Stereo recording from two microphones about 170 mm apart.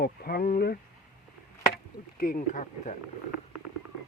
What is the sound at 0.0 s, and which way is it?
Speech, 65° left (ahead or behind).